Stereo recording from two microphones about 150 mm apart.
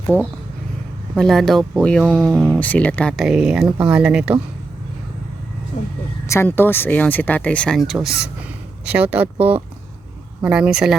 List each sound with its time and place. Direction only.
1.1 s speech: centre (ahead or behind)
2.6 s speech: 10° left (ahead or behind); by 4.4 s 5° right (ahead or behind)
5.7 s a sound: 45° left (ahead or behind)
6.2 s speech: 15° left (ahead or behind); by 10.9 s 5° right (ahead or behind)